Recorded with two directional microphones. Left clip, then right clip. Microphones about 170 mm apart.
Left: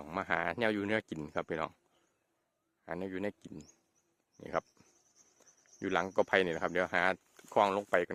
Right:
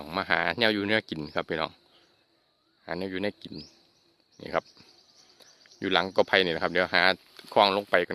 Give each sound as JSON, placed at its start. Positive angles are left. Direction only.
{"t": 0.0, "sound": "speech", "side_deg": 10}
{"t": 2.8, "sound": "speech", "side_deg": 10}